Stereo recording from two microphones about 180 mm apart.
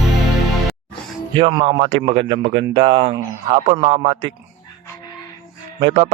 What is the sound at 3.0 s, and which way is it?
A man's voice, 35° right (ahead or behind).